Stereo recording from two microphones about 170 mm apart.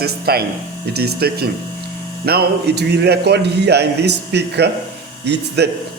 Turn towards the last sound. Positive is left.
turn(degrees=-80)